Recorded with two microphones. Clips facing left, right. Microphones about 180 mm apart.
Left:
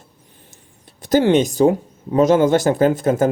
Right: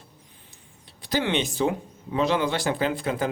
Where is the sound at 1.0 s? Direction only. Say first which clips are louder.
Left 11 dB; 45° left (ahead or behind).